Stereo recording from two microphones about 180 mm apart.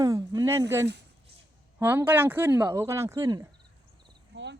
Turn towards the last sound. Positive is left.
turn(degrees=-80)